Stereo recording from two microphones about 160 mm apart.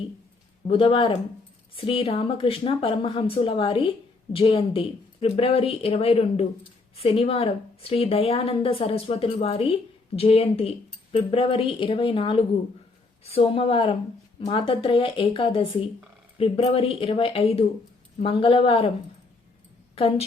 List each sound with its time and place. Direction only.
0.7 s speech: 35° left (ahead or behind)
20.0 s speech: 35° left (ahead or behind)